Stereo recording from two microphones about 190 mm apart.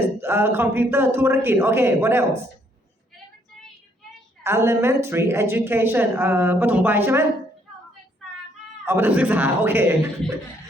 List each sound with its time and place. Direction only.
0.2 s a woman's voice: 10° right (ahead or behind)
4.4 s a woman's voice: 15° right (ahead or behind)
8.8 s a woman's voice: 10° right (ahead or behind)